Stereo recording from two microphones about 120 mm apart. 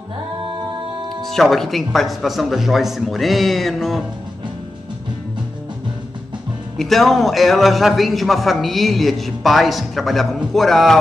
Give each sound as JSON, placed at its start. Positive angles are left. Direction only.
{"t": 1.2, "sound": "a man's voice", "side_deg": 0}
{"t": 6.8, "sound": "a man's voice", "side_deg": 0}